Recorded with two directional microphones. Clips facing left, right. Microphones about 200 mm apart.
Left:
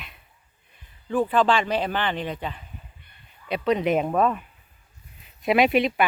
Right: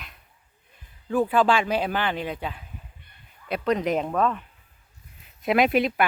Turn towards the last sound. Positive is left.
turn(degrees=0)  # may be behind; listen again after turning